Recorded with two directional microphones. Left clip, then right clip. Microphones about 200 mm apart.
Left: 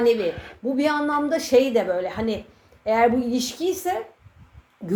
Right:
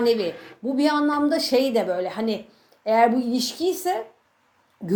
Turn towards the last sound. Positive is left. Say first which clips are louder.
# right 1 dB
turn(degrees=-30)  # may be behind; listen again after turning